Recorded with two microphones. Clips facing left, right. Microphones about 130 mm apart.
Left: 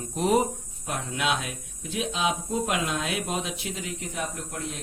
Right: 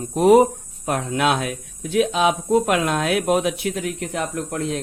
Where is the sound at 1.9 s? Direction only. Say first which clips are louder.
Right 9 dB; 70° right (ahead or behind).